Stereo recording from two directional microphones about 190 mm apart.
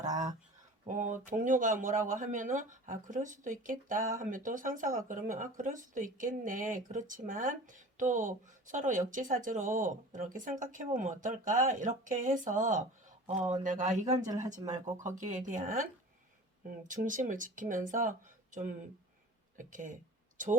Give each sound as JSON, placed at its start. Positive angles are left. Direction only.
{"t": 0.0, "sound": "a sound", "side_deg": -40}
{"t": 0.9, "sound": "speech", "side_deg": -40}
{"t": 14.6, "sound": "speech", "side_deg": -20}
{"t": 15.0, "sound": "speech", "side_deg": -40}
{"t": 19.5, "sound": "speech", "side_deg": -45}